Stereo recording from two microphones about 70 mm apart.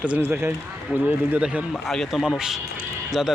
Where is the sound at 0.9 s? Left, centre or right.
Right.